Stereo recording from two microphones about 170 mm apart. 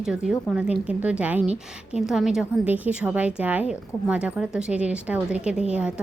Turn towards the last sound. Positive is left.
turn(degrees=-5)  # may be behind; listen again after turning